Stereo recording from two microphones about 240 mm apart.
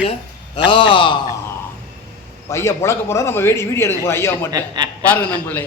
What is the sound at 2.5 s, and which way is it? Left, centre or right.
A man's voice, centre.